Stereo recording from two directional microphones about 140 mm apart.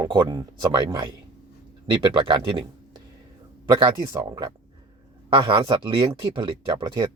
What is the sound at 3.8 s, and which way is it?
Speech, 30° right (ahead or behind).